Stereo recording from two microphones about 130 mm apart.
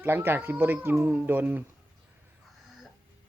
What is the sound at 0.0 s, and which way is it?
Speech, 15° right (ahead or behind).